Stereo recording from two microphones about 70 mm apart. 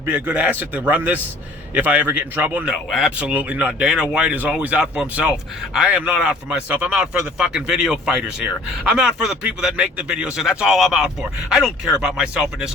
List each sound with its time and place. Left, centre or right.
0.1 s a man's voice: right
2.6 s speech: centre
3.2 s a man's voice: centre
6.9 s speech: centre